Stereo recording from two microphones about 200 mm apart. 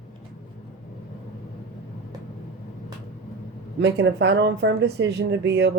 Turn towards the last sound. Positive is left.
turn(degrees=-60)  # may be behind; listen again after turning